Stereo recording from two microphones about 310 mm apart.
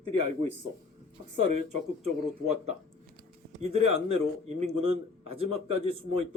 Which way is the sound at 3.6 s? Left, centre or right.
Right.